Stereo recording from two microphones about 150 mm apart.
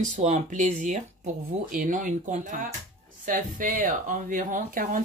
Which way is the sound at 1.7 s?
65° right (ahead or behind).